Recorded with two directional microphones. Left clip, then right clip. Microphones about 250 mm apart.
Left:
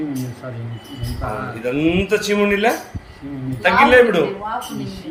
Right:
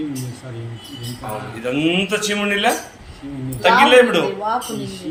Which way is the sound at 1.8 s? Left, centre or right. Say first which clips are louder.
Left 1 dB; centre.